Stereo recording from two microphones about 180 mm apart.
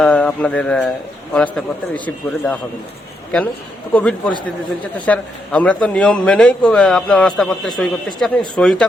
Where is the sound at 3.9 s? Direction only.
5° left (ahead or behind).